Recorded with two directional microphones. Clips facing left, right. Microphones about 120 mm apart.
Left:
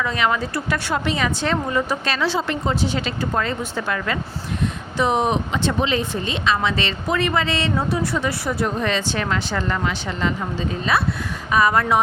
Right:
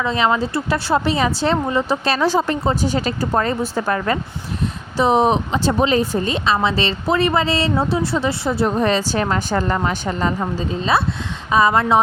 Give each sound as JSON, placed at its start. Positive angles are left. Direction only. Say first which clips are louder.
{"t": 0.0, "sound": "speech", "louder": "right 3 dB", "side_deg": -25}